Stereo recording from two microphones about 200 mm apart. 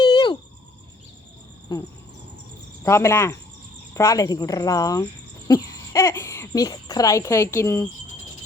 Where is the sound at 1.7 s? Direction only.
20° left (ahead or behind).